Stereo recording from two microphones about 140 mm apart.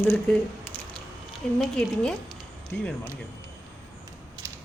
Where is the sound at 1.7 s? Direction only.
5° left (ahead or behind).